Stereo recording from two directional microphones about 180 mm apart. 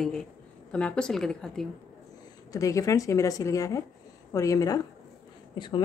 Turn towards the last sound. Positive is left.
turn(degrees=25)  # may be behind; listen again after turning